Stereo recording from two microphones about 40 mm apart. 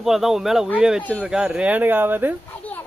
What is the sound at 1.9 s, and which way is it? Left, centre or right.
Speech, right.